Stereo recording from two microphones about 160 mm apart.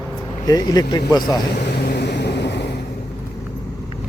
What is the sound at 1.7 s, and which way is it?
Vehicle, 80° left.